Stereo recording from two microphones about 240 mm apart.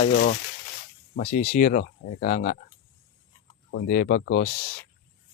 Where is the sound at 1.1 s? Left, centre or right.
Left.